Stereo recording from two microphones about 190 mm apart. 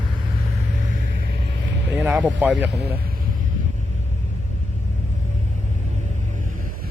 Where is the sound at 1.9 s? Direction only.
5° right (ahead or behind).